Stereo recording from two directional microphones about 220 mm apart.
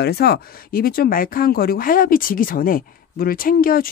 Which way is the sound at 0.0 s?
45° left (ahead or behind).